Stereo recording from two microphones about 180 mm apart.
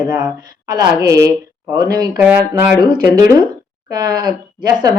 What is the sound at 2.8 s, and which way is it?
Speech, 20° right (ahead or behind).